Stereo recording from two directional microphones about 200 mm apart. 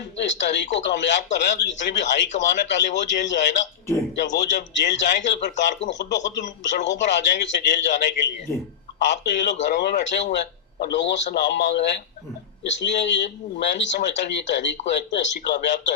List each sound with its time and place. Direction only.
0.3 s speech: 60° left (ahead or behind)